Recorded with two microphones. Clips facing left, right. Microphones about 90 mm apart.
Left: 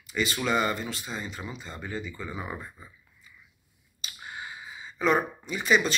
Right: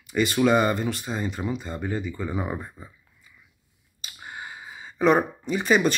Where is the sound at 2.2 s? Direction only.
40° right (ahead or behind).